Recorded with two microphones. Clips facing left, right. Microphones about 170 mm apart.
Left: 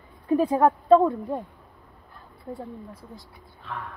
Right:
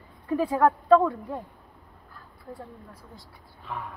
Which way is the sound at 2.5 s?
20° left (ahead or behind).